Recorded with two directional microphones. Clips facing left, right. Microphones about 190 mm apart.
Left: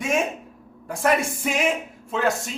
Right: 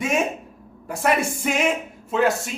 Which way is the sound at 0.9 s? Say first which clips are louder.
Even; centre (ahead or behind).